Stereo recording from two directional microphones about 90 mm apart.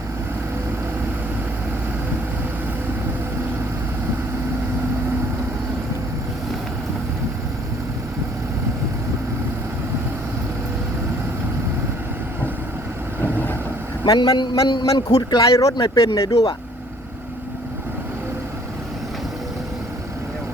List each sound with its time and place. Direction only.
13.2 s vehicle: 20° left (ahead or behind)
14.1 s a man's voice: 50° left (ahead or behind)